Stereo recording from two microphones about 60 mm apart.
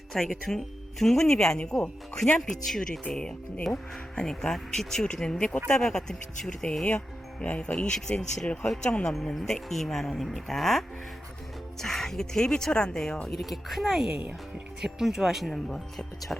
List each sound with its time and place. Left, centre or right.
0.1 s speech: centre
2.6 s speech: centre
7.4 s speech: left
7.9 s speech: centre
9.1 s speech: centre
13.2 s speech: centre
15.5 s speech: centre